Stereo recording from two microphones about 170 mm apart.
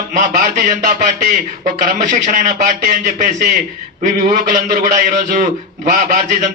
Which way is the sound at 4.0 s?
50° right (ahead or behind).